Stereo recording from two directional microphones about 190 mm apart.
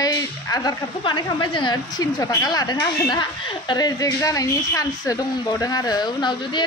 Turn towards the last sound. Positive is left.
turn(degrees=25)  # may be behind; listen again after turning